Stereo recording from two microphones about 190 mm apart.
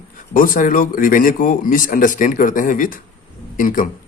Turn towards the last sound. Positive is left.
turn(degrees=45)  # may be behind; listen again after turning